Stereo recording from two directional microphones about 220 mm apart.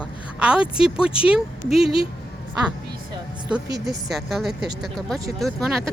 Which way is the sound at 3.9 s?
Centre (ahead or behind).